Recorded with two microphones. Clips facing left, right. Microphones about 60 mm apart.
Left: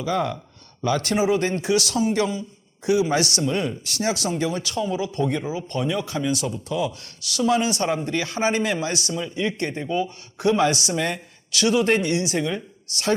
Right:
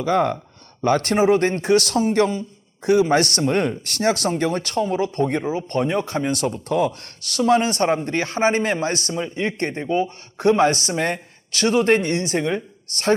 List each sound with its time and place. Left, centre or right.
0.0 s a man's voice: right